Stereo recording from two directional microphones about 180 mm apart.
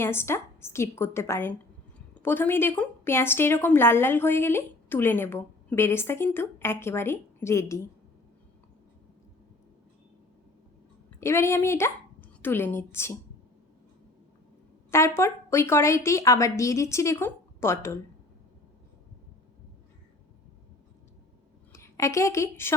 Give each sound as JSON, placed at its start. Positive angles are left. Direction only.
{"t": 0.0, "sound": "a woman's voice", "side_deg": 15}
{"t": 11.2, "sound": "a woman's voice", "side_deg": 15}
{"t": 14.8, "sound": "a woman's voice", "side_deg": 15}
{"t": 21.7, "sound": "a woman's voice", "side_deg": 15}